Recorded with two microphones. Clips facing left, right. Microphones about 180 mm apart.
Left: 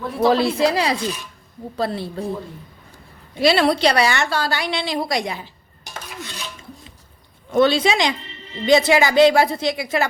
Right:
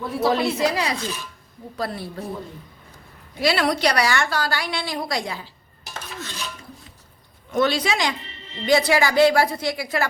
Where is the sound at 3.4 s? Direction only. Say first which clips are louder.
Left 4 dB; 25° left (ahead or behind).